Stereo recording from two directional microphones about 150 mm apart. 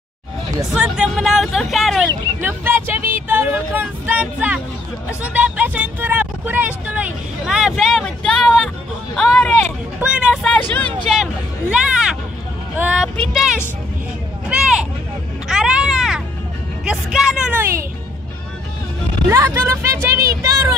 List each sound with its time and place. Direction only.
0.7 s speech: 5° right (ahead or behind)
2.4 s speech: 15° right (ahead or behind); by 9.7 s 5° left (ahead or behind)
9.9 s vehicle: 5° right (ahead or behind)
11.7 s a sound: 5° right (ahead or behind)
12.7 s speech: 5° right (ahead or behind)
15.4 s music: 5° right (ahead or behind)
16.8 s speech: 5° right (ahead or behind)
19.2 s speech: 15° right (ahead or behind)